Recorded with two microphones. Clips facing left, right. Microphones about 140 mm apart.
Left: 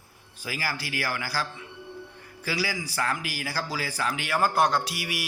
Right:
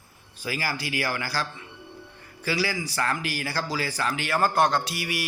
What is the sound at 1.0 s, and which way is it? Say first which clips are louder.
A man's voice: left 1 dB; 5° left (ahead or behind).